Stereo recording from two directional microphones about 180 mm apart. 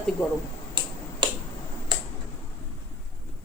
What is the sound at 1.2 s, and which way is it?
Finger snapping, 25° right (ahead or behind).